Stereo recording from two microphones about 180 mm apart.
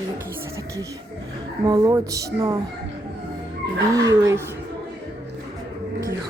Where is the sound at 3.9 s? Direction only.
20° right (ahead or behind).